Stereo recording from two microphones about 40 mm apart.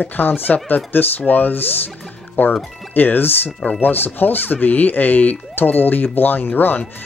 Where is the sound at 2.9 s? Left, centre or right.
Left.